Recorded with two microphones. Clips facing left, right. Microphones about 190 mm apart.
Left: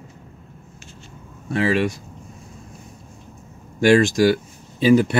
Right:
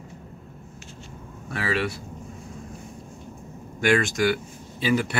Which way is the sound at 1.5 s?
25° left (ahead or behind).